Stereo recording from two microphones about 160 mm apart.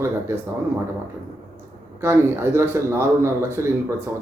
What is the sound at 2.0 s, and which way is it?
Speech, 15° right (ahead or behind).